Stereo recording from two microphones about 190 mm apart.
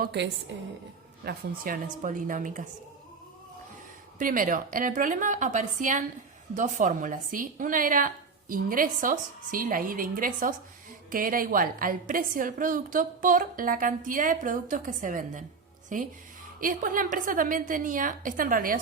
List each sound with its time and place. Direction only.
0.0 s a woman's voice: 60° right (ahead or behind); by 2.6 s 45° right (ahead or behind)
4.2 s a woman's voice: 45° right (ahead or behind)